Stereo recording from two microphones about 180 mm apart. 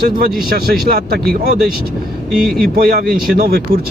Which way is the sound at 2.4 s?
Centre (ahead or behind).